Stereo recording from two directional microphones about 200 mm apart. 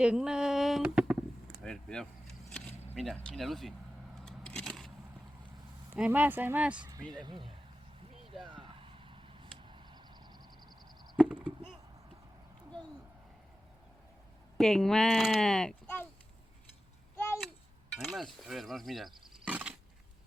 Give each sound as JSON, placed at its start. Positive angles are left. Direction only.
{"t": 0.0, "sound": "a sound", "side_deg": -5}
{"t": 1.6, "sound": "speech", "side_deg": 5}
{"t": 4.3, "sound": "vehicle", "side_deg": 5}
{"t": 5.9, "sound": "speech", "side_deg": -10}
{"t": 6.9, "sound": "speech", "side_deg": -20}
{"t": 8.4, "sound": "vehicle", "side_deg": -25}
{"t": 11.2, "sound": "chop", "side_deg": -5}
{"t": 14.6, "sound": "speech", "side_deg": 0}
{"t": 17.2, "sound": "a sound", "side_deg": 10}
{"t": 17.9, "sound": "a sound", "side_deg": 0}
{"t": 18.4, "sound": "speech", "side_deg": 0}